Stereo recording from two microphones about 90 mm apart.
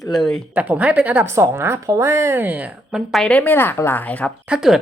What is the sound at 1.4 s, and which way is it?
Speech, 30° right (ahead or behind).